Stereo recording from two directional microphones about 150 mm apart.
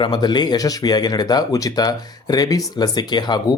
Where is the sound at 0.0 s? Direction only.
30° left (ahead or behind).